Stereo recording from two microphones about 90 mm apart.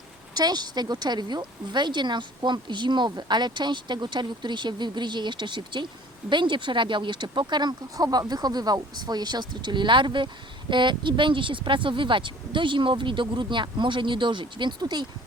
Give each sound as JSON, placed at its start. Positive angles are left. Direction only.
{"t": 0.3, "sound": "speech", "side_deg": -50}